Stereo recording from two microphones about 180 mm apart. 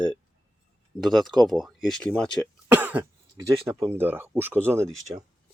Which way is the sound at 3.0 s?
15° right (ahead or behind).